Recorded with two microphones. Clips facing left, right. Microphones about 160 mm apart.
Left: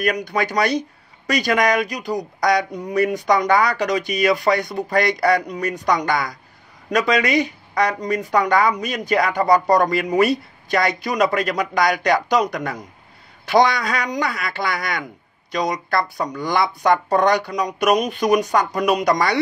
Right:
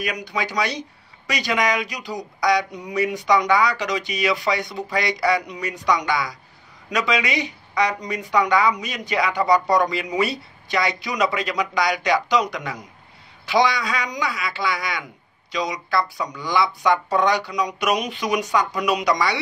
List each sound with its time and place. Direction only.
0.0 s speech: 55° left (ahead or behind)